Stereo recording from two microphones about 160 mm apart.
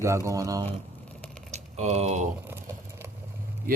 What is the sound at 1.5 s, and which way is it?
Typing, 45° right (ahead or behind).